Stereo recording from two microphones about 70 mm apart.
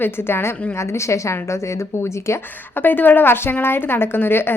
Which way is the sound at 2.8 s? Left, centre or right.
Left.